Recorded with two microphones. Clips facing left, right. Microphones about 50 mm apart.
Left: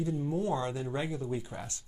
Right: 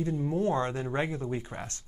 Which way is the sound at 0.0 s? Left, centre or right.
Right.